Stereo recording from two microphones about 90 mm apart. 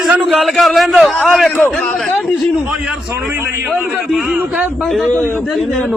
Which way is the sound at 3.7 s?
5° right (ahead or behind).